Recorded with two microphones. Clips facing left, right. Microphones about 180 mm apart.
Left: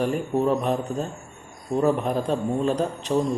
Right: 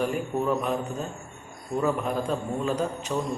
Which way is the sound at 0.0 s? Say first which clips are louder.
Left 4 dB; 30° left (ahead or behind).